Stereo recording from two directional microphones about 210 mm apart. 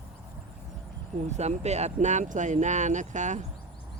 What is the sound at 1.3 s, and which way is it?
Speech, 30° right (ahead or behind).